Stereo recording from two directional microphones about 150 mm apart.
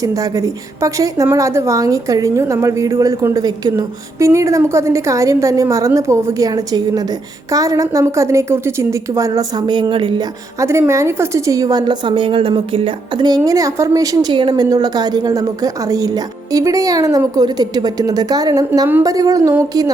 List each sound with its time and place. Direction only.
0.0 s a woman's voice: 20° right (ahead or behind)